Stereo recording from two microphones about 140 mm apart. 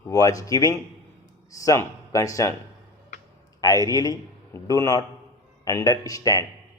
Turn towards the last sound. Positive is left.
turn(degrees=25)  # may be behind; listen again after turning